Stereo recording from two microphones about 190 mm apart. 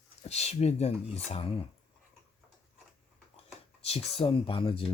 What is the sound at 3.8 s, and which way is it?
Speech, 30° left (ahead or behind).